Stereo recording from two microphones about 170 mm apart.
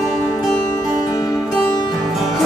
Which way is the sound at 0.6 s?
20° left (ahead or behind).